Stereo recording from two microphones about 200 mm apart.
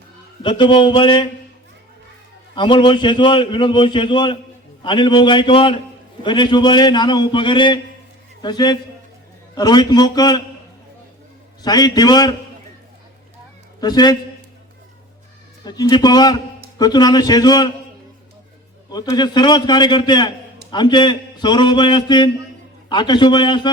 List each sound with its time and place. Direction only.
0.4 s a man's voice: 25° left (ahead or behind)
2.6 s a man's voice: 25° left (ahead or behind)
11.6 s a man's voice: 20° left (ahead or behind)
13.8 s a man's voice: 20° left (ahead or behind)
15.6 s a man's voice: 20° left (ahead or behind)
18.9 s a man's voice: 20° left (ahead or behind)